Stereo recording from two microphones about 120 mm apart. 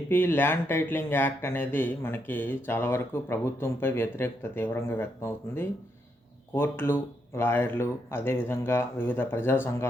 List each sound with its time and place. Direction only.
0.1 s speech: 15° left (ahead or behind)